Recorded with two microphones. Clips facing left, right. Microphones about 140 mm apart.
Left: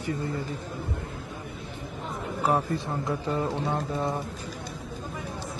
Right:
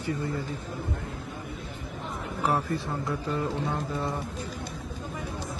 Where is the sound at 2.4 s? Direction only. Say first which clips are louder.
Left 2 dB; 15° left (ahead or behind).